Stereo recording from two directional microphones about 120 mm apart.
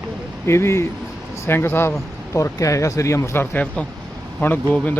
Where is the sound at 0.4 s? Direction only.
20° left (ahead or behind).